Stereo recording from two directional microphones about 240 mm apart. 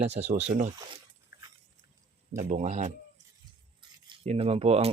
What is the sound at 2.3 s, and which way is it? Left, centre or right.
Speech, right.